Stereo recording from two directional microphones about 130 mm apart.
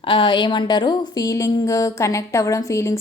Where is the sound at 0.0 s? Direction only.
40° left (ahead or behind).